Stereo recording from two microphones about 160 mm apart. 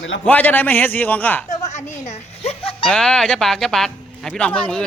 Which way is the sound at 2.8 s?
5° left (ahead or behind).